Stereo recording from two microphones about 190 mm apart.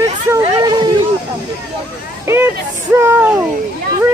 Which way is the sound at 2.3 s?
15° right (ahead or behind).